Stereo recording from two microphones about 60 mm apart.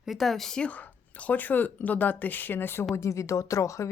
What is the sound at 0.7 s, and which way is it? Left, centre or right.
Speech, left.